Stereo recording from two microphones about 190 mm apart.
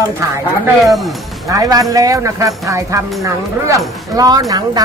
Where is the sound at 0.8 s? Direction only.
Centre (ahead or behind).